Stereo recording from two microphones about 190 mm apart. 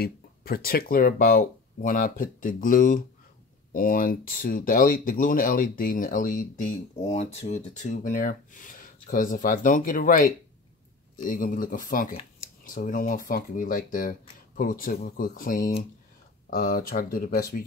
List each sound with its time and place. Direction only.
0.0 s speech: 50° left (ahead or behind)